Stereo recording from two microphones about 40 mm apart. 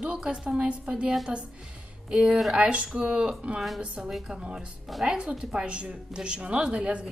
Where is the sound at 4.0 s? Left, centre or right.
Centre.